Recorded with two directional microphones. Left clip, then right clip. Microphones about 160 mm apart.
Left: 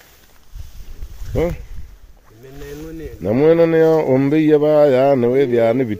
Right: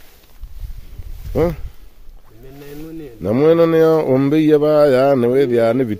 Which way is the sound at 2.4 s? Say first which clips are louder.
Left 1 dB; 40° left (ahead or behind).